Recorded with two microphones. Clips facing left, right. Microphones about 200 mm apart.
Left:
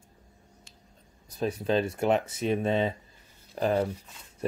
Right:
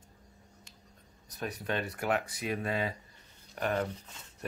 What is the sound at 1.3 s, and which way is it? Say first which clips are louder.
Speech: left 8 dB; 25° left (ahead or behind).